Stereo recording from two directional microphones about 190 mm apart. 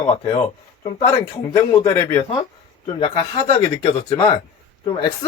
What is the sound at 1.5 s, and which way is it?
Speech, 15° left (ahead or behind).